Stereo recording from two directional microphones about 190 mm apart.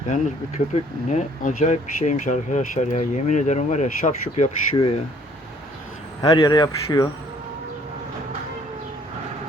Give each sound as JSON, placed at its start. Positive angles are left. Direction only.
{"t": 0.1, "sound": "speech", "side_deg": 40}
{"t": 6.2, "sound": "speech", "side_deg": 20}